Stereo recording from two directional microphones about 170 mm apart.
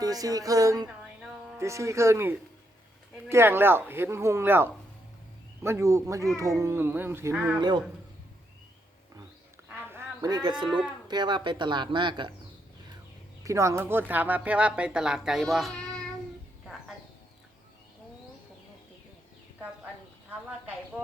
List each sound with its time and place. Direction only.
0.0 s a woman's voice: 20° right (ahead or behind)
9.6 s a sound: 15° right (ahead or behind)
10.6 s speech: 25° right (ahead or behind)
13.4 s a woman's voice: 20° right (ahead or behind); by 16.0 s 5° left (ahead or behind)